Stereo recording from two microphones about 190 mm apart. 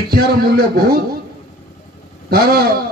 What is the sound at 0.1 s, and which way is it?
Speech, 55° right (ahead or behind).